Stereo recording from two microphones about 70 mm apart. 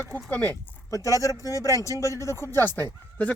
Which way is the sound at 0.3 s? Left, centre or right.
Left.